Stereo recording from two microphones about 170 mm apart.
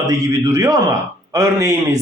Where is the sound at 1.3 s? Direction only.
20° right (ahead or behind).